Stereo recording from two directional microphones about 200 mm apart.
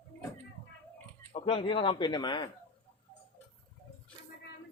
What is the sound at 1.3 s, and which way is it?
Speech, 25° left (ahead or behind).